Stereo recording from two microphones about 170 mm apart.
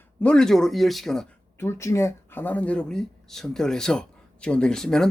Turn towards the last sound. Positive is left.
turn(degrees=5)  # may be behind; listen again after turning